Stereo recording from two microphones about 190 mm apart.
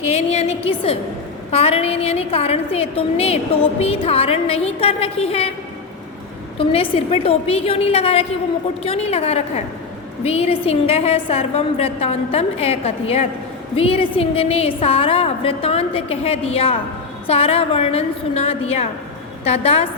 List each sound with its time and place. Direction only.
0.1 s a woman's voice: 35° left (ahead or behind)
6.6 s a woman's voice: 30° left (ahead or behind)